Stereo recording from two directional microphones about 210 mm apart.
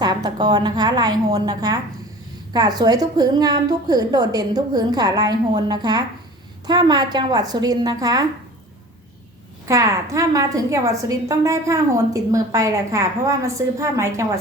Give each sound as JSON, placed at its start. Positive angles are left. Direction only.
{"t": 0.0, "sound": "a woman's voice", "side_deg": -20}
{"t": 9.6, "sound": "a woman's voice", "side_deg": -15}